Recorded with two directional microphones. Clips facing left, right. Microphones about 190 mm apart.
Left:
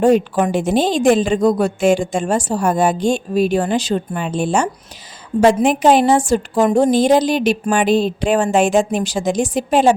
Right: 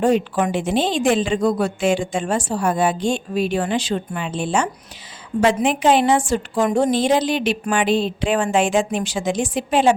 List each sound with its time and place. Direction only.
0.0 s a woman's voice: 40° left (ahead or behind)